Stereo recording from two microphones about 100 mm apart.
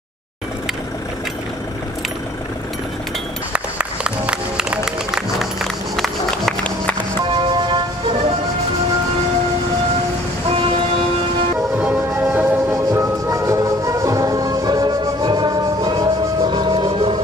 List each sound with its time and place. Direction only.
3.5 s music: 10° right (ahead or behind); by 7.2 s 15° left (ahead or behind)
7.2 s music: 50° right (ahead or behind)
11.8 s music: 15° right (ahead or behind)
12.7 s music: 30° right (ahead or behind); by 17.2 s 55° right (ahead or behind)